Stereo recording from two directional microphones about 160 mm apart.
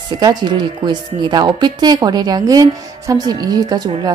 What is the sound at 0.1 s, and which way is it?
Speech, 25° right (ahead or behind).